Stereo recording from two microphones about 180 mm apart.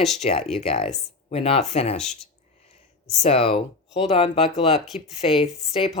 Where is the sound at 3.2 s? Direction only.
35° left (ahead or behind).